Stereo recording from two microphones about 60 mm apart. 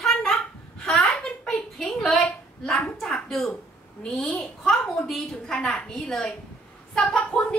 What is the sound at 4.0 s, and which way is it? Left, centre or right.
A woman's voice, centre.